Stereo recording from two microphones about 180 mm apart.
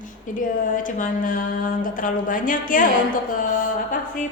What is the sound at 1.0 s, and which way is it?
A man's voice, 50° left (ahead or behind).